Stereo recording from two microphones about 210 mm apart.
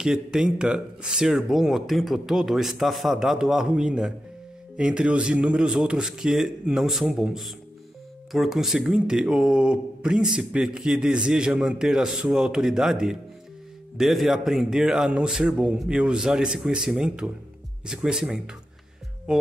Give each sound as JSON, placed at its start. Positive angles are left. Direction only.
{"t": 0.0, "sound": "speech", "side_deg": -5}